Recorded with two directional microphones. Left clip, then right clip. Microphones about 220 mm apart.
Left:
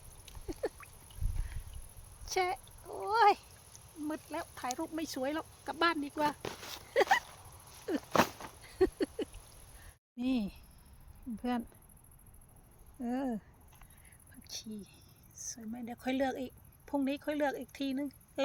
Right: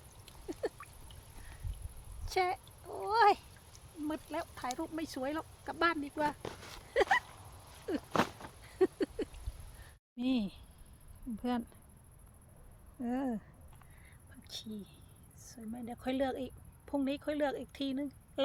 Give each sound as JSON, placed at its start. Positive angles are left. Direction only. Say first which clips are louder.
{"t": 0.6, "sound": "duck", "louder": "left 1 dB", "side_deg": 10}
{"t": 2.3, "sound": "speech", "louder": "even", "side_deg": 10}
{"t": 6.4, "sound": "a sound", "louder": "left 3 dB", "side_deg": 35}
{"t": 6.9, "sound": "speech", "louder": "left 1 dB", "side_deg": 15}
{"t": 8.1, "sound": "a sound", "louder": "left 4 dB", "side_deg": 30}
{"t": 8.6, "sound": "a sound", "louder": "left 1 dB", "side_deg": 10}
{"t": 10.2, "sound": "speech", "louder": "even", "side_deg": 5}
{"t": 13.0, "sound": "speech", "louder": "even", "side_deg": 5}
{"t": 14.4, "sound": "whispering", "louder": "even", "side_deg": 0}
{"t": 15.4, "sound": "speech", "louder": "left 1 dB", "side_deg": 0}